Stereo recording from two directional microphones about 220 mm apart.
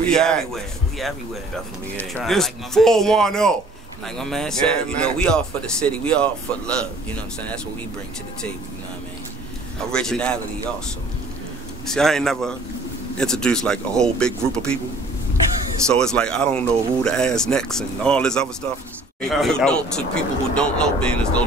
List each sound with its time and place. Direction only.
0.1 s speech: 5° left (ahead or behind)
9.9 s speech: 5° left (ahead or behind)
11.9 s speech: centre (ahead or behind)
15.9 s speech: 5° left (ahead or behind)